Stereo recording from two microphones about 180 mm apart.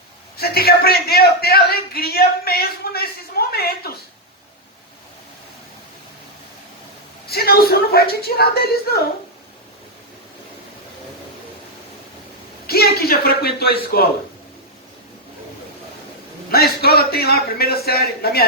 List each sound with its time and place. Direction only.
0.3 s a man's voice: 60° left (ahead or behind)
7.3 s a man's voice: 60° left (ahead or behind)
12.6 s a man's voice: 60° left (ahead or behind)
16.5 s a man's voice: 60° left (ahead or behind)